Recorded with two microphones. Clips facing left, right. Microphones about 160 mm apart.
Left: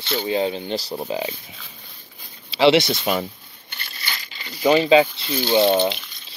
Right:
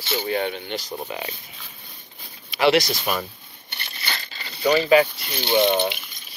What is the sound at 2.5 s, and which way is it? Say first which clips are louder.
Speech: left 3 dB; 25° left (ahead or behind).